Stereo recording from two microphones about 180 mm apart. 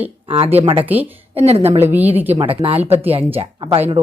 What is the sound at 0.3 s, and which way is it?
Speech, 30° right (ahead or behind).